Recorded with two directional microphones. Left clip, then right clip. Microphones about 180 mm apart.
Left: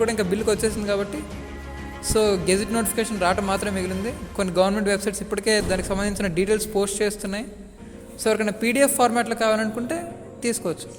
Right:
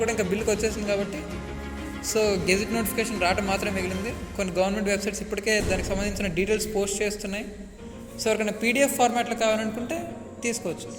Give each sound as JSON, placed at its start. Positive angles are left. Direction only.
{"t": 0.0, "sound": "a man's voice", "side_deg": 40}
{"t": 2.1, "sound": "a man's voice", "side_deg": 40}